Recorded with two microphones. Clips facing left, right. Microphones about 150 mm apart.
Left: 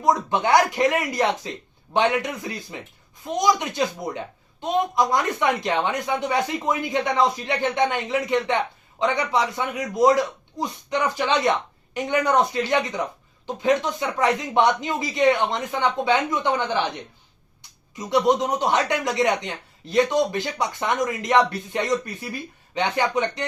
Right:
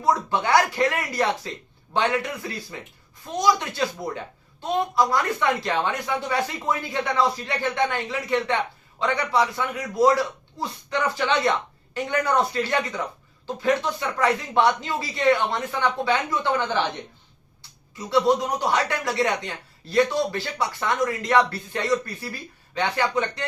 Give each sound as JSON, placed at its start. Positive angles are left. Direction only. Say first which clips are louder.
{"t": 0.0, "sound": "speech", "louder": "left 2 dB", "side_deg": 20}